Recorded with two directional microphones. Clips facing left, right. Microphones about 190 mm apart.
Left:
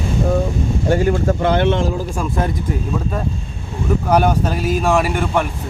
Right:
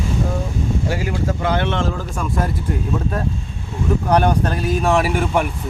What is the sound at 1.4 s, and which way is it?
Speech, 20° left (ahead or behind).